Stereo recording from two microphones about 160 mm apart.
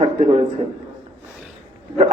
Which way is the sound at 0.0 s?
40° right (ahead or behind).